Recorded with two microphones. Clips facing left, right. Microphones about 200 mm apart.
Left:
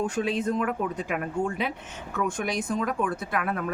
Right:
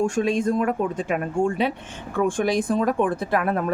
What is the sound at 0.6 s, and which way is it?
Speech, 30° right (ahead or behind).